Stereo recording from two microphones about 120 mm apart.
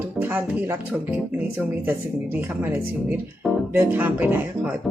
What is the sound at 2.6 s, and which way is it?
Speech, 15° right (ahead or behind).